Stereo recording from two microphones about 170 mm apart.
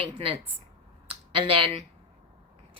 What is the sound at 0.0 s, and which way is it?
Speech, 30° right (ahead or behind).